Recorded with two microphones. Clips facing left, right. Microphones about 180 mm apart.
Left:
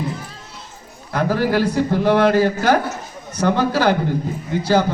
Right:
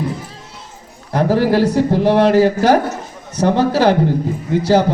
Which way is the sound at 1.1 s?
30° right (ahead or behind).